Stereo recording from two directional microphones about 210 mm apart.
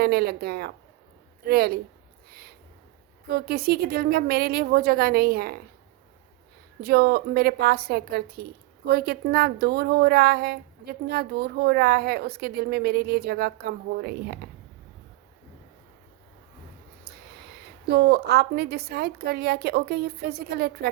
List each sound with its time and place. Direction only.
0.0 s a woman's voice: 50° right (ahead or behind)
3.2 s a woman's voice: 50° right (ahead or behind)
6.8 s a woman's voice: 50° right (ahead or behind)
17.8 s a woman's voice: 50° right (ahead or behind)